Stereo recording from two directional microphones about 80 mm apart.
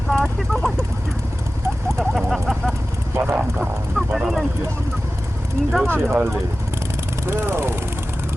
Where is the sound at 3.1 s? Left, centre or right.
Right.